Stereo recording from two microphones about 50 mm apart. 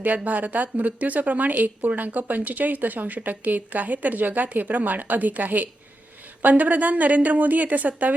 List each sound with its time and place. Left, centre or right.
0.3 s speech: right